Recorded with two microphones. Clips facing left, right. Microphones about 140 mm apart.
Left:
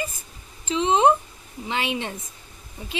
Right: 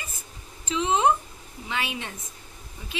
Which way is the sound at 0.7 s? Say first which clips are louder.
Left 4 dB; 25° left (ahead or behind).